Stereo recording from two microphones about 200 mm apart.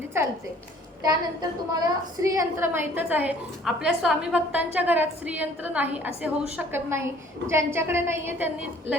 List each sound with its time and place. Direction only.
1.0 s a woman's voice: 20° right (ahead or behind)